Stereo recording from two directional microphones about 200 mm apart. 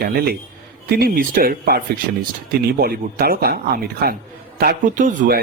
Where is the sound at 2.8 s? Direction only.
50° right (ahead or behind).